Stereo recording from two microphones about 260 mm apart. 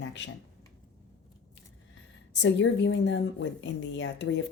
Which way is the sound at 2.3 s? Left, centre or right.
Left.